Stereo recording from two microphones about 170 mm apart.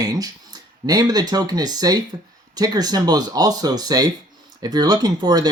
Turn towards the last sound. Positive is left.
turn(degrees=-25)  # may be behind; listen again after turning